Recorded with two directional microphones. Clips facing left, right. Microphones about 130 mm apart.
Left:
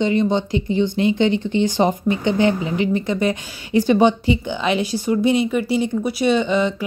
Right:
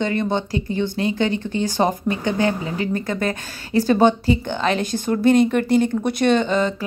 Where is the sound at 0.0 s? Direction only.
50° right (ahead or behind).